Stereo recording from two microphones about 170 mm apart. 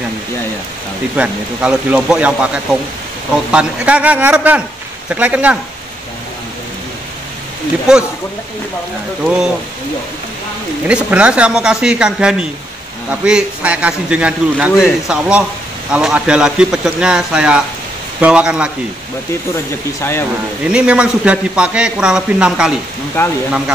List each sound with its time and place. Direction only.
1.1 s a man's voice: 5° right (ahead or behind)
9.2 s speech: 5° right (ahead or behind)
10.9 s a man's voice: 5° right (ahead or behind)
20.0 s speech: 15° left (ahead or behind)
20.7 s speech: 5° right (ahead or behind)
23.2 s speech: 15° left (ahead or behind)